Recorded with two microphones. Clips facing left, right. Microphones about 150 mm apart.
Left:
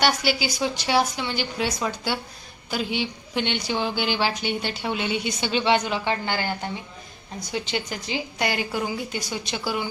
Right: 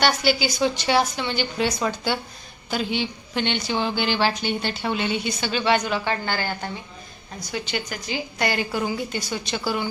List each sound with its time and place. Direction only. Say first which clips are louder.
0.0 s a woman's voice: right 2 dB; 10° left (ahead or behind)
8.4 s a woman's voice: right 2 dB; 15° left (ahead or behind)